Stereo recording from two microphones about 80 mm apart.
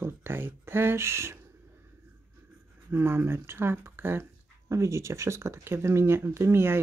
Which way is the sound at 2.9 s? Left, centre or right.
Right.